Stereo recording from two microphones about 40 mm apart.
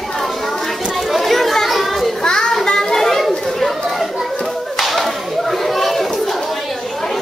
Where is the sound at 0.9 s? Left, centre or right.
Centre.